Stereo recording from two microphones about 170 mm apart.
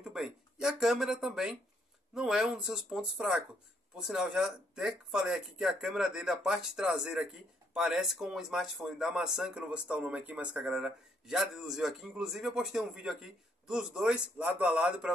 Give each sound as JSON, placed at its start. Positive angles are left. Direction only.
{"t": 0.0, "sound": "speech", "side_deg": 0}